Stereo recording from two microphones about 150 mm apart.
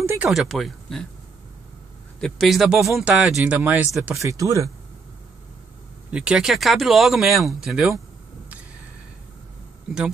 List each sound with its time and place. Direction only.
0.0 s a sound: 15° right (ahead or behind)
0.3 s speech: centre (ahead or behind)
2.1 s speech: centre (ahead or behind); by 4.6 s 20° right (ahead or behind)
6.0 s speech: 5° right (ahead or behind)